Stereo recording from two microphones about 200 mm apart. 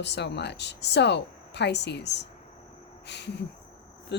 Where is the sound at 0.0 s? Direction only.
60° left (ahead or behind).